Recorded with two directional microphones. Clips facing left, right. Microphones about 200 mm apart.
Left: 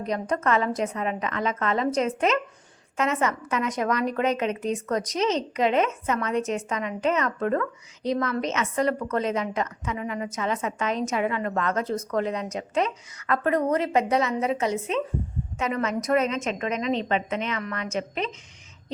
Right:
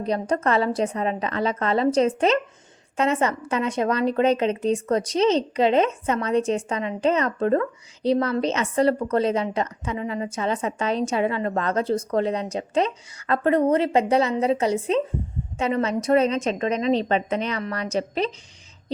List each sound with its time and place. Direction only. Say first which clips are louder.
0.0 s a woman's voice: right 3 dB; 30° right (ahead or behind)